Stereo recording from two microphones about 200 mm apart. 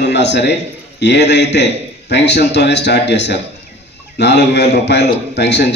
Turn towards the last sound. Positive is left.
turn(degrees=60)  # may be behind; listen again after turning